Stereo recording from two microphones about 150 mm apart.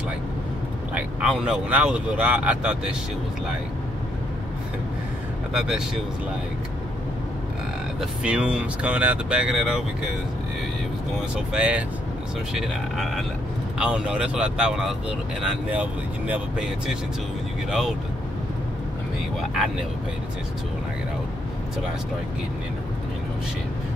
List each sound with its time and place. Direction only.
0.9 s speech: 5° right (ahead or behind)
5.5 s speech: 5° right (ahead or behind)
8.0 s speech: 5° right (ahead or behind)
11.3 s speech: 5° right (ahead or behind)